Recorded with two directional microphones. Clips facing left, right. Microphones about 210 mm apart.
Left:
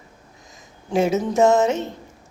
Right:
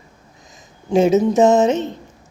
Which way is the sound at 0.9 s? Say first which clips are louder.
Right 6 dB; 20° right (ahead or behind).